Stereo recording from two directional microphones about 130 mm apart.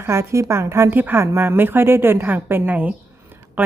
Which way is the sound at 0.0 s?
20° right (ahead or behind).